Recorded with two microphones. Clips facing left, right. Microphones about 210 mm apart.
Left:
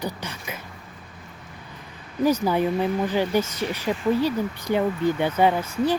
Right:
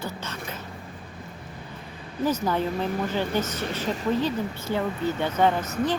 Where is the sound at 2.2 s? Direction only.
10° left (ahead or behind).